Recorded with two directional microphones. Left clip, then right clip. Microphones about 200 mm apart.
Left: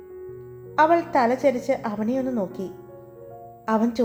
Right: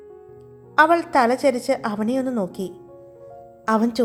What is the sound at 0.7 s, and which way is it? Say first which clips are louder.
A woman's voice: right 3 dB; 25° right (ahead or behind).